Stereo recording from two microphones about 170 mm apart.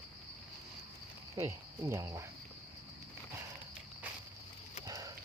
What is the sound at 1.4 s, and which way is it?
Speech, 15° right (ahead or behind).